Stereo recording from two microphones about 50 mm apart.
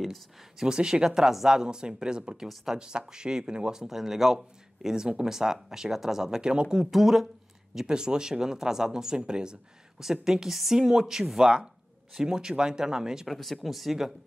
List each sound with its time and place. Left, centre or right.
0.0 s speech: centre
0.7 s speech: centre
13.3 s speech: centre